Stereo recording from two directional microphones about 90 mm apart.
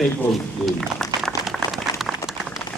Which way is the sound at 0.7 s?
Centre (ahead or behind).